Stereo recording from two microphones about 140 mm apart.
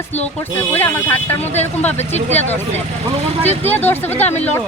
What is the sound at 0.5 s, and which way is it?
Speech, 15° left (ahead or behind).